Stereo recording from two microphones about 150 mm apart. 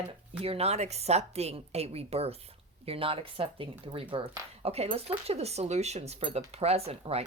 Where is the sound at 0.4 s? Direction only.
45° right (ahead or behind).